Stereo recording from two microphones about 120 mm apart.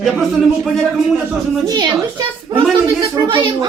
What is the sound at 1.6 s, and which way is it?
A child's voice, 35° right (ahead or behind).